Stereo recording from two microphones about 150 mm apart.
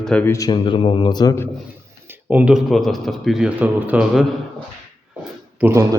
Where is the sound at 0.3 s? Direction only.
25° left (ahead or behind).